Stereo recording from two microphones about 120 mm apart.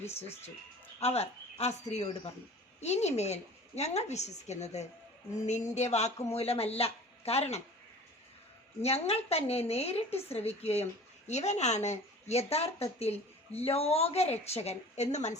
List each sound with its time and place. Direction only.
0.1 s a woman's voice: 60° left (ahead or behind)
2.8 s a woman's voice: 65° left (ahead or behind)
6.3 s a woman's voice: 55° left (ahead or behind)
8.8 s a woman's voice: 60° left (ahead or behind)